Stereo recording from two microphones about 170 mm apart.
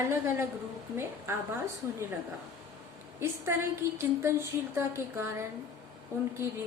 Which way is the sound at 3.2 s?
15° right (ahead or behind).